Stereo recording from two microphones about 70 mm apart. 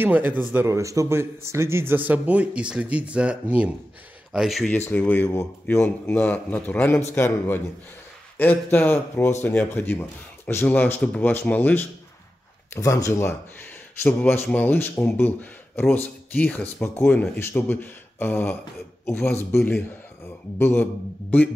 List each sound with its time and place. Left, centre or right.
0.0 s a man's voice: right
0.7 s a man's voice: right; by 3.7 s centre
4.3 s speech: centre
4.8 s speech: left
12.7 s speech: left
14.0 s speech: left